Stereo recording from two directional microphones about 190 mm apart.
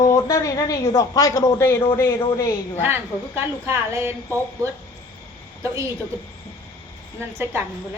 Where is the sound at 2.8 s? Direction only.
10° right (ahead or behind).